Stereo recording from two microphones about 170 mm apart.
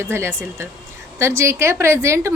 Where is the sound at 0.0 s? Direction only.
15° right (ahead or behind).